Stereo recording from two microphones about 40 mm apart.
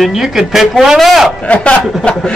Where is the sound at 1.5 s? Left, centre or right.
Left.